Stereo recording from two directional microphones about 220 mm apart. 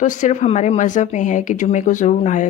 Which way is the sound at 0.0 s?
35° left (ahead or behind).